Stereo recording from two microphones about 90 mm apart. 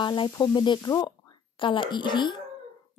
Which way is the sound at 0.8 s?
45° left (ahead or behind).